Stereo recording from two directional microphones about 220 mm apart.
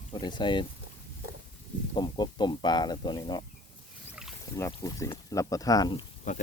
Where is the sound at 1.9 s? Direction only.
20° left (ahead or behind).